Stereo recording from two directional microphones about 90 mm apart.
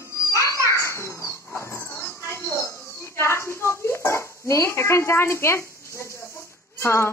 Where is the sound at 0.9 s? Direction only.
35° left (ahead or behind).